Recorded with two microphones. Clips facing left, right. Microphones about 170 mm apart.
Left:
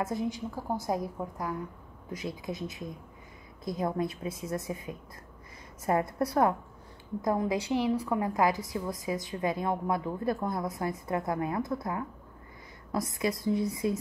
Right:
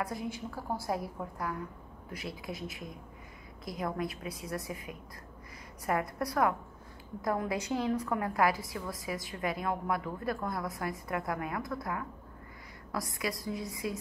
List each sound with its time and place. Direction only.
0.0 s a woman's voice: 20° left (ahead or behind)